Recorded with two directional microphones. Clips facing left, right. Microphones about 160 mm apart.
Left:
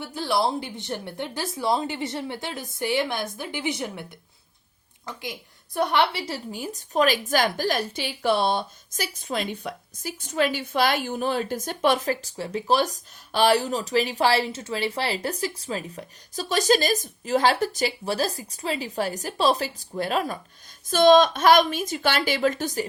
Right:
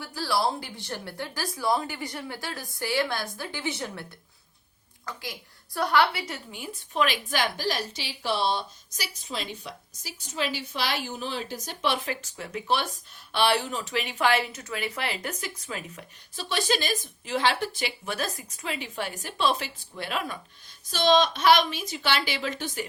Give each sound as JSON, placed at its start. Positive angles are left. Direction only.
{"t": 0.0, "sound": "a woman's voice", "side_deg": 20}
{"t": 5.0, "sound": "a woman's voice", "side_deg": 20}
{"t": 20.9, "sound": "a woman's voice", "side_deg": 50}